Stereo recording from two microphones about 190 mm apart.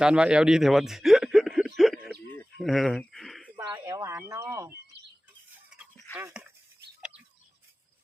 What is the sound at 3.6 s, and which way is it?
Speech, 15° right (ahead or behind).